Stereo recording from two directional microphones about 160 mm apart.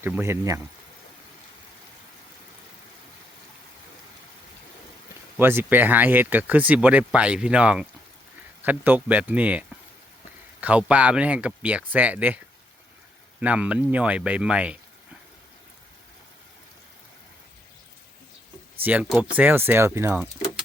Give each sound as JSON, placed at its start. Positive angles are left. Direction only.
{"t": 0.0, "sound": "speech", "side_deg": -15}
{"t": 5.4, "sound": "speech", "side_deg": -15}
{"t": 13.4, "sound": "speech", "side_deg": -10}
{"t": 18.8, "sound": "speech", "side_deg": -10}